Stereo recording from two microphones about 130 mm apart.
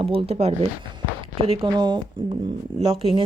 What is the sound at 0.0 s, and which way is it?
Speech, 45° right (ahead or behind).